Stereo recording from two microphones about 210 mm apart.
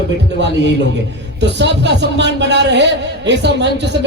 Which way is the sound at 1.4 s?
55° right (ahead or behind).